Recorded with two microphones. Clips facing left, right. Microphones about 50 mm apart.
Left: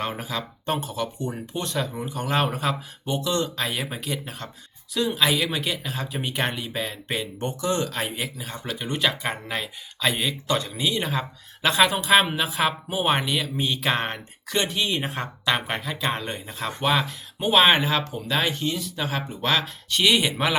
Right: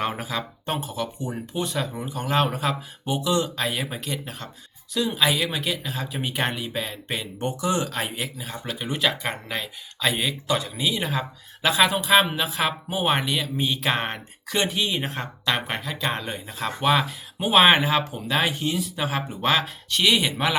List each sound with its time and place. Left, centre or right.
0.0 s speech: centre
19.9 s speech: centre